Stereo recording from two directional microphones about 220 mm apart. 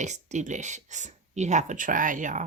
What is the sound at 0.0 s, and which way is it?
Speech, 30° right (ahead or behind).